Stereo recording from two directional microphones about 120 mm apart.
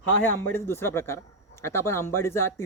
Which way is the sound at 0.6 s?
20° left (ahead or behind).